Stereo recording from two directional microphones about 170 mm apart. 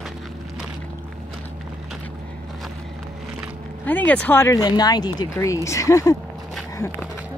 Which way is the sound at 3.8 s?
10° left (ahead or behind).